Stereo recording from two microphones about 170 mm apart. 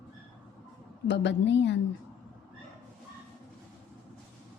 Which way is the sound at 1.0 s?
90° left.